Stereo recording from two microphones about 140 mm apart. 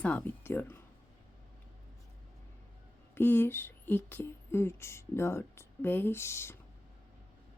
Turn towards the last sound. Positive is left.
turn(degrees=20)  # may be behind; listen again after turning